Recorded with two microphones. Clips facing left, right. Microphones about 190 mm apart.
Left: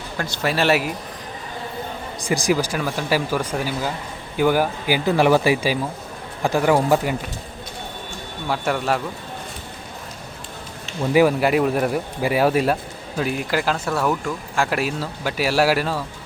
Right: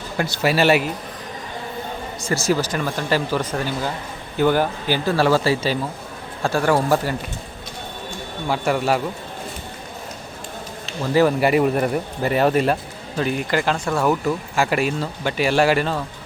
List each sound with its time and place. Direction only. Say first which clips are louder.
0.2 s speech: right 3 dB; 5° right (ahead or behind)
2.2 s speech: left 1 dB; 15° left (ahead or behind)
8.4 s speech: right 2 dB; centre (ahead or behind)
11.1 s speech: left 1 dB; 10° left (ahead or behind)
11.3 s speech: right 1 dB; centre (ahead or behind)